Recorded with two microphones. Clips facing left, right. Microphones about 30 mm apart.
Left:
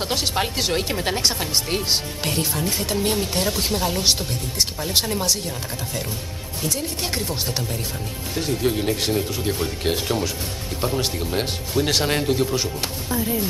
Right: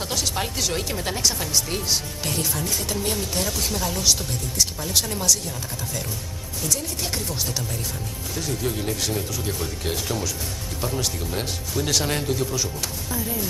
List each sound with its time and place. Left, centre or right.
0.0 s speech: left
1.2 s speech: left
6.6 s speech: left